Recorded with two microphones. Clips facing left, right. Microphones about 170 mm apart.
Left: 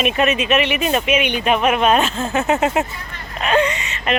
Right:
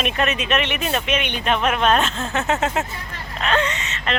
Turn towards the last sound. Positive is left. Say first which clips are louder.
# left 4 dB
turn(degrees=10)  # may be behind; listen again after turning